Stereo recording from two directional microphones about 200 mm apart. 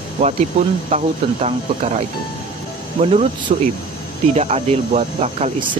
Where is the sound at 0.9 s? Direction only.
35° right (ahead or behind).